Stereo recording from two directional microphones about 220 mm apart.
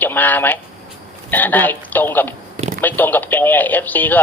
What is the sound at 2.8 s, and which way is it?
A man's voice, 10° left (ahead or behind).